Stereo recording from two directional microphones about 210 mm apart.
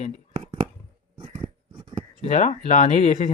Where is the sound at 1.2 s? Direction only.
25° right (ahead or behind).